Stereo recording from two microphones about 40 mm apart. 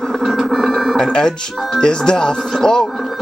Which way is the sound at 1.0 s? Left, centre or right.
Left.